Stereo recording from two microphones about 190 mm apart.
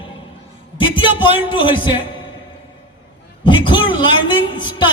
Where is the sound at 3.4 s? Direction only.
25° left (ahead or behind).